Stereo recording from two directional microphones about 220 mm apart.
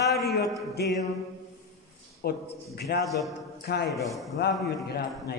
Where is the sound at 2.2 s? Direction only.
45° left (ahead or behind).